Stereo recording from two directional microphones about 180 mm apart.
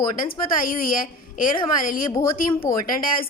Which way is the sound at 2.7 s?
20° left (ahead or behind).